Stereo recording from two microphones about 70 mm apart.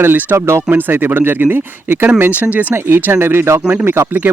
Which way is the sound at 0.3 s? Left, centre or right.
Right.